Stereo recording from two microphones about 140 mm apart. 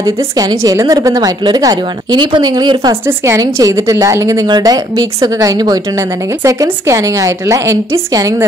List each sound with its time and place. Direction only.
0.0 s a woman's voice: 25° right (ahead or behind)
3.1 s a woman's voice: 20° right (ahead or behind)